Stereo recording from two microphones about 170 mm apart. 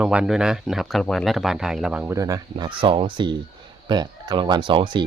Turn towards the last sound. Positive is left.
turn(degrees=-30)  # may be behind; listen again after turning